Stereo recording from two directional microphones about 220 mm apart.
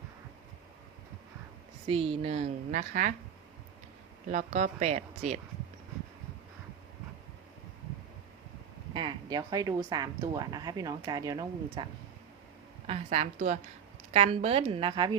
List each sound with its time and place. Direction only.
1.9 s a woman's voice: 25° right (ahead or behind)
4.3 s speech: 35° right (ahead or behind)
8.9 s speech: 20° right (ahead or behind)
12.9 s a woman's voice: 30° right (ahead or behind)